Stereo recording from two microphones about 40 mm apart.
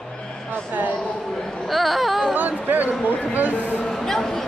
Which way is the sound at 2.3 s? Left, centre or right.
Right.